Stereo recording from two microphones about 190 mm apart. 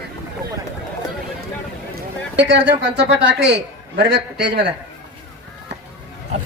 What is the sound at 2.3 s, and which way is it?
A man's voice, 65° right (ahead or behind).